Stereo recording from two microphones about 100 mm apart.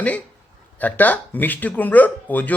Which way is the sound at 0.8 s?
15° left (ahead or behind).